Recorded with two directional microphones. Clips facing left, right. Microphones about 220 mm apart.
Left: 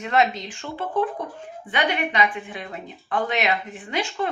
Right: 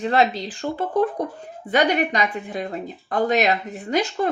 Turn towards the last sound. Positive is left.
turn(degrees=-40)  # may be behind; listen again after turning